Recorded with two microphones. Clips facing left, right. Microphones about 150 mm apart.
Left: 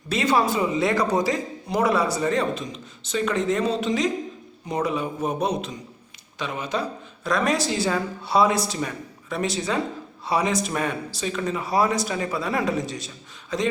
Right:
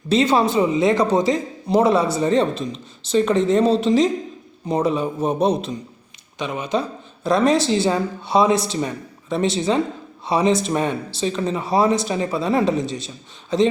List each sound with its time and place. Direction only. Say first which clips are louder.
0.1 s speech: right 5 dB; 25° right (ahead or behind)
6.4 s speech: right 4 dB; 20° right (ahead or behind)